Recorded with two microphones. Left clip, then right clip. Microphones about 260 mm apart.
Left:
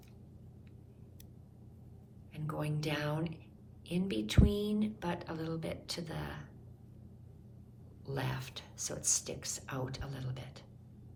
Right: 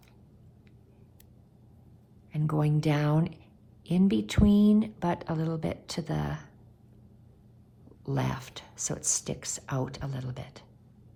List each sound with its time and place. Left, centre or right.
2.3 s a woman's voice: right
8.0 s a woman's voice: right